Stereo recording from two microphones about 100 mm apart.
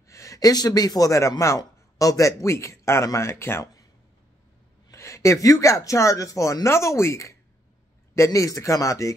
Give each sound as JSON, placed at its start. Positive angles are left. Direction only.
{"t": 0.1, "sound": "speech", "side_deg": 30}
{"t": 4.9, "sound": "speech", "side_deg": 30}